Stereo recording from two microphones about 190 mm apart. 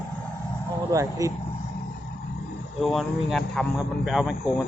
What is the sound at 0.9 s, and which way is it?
Speech, 15° right (ahead or behind).